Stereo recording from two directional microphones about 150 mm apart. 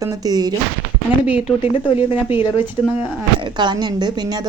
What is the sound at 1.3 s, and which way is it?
Speech, 5° right (ahead or behind).